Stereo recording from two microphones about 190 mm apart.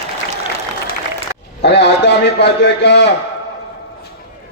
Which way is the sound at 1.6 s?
65° left (ahead or behind).